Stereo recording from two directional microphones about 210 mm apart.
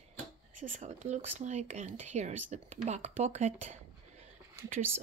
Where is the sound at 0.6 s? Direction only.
35° right (ahead or behind).